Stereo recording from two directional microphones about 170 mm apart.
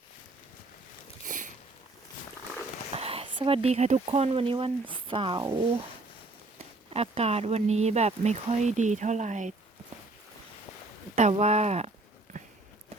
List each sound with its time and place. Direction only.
2.9 s speech: 35° right (ahead or behind)
6.9 s speech: 35° right (ahead or behind)
11.1 s speech: 40° right (ahead or behind)